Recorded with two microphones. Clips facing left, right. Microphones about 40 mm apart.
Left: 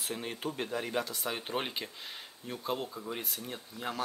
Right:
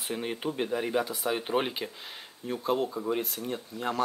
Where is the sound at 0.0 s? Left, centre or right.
Centre.